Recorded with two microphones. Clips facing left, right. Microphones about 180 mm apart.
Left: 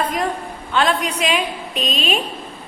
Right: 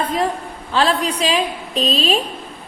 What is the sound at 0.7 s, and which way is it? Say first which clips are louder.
A woman's voice: right 1 dB; 35° right (ahead or behind).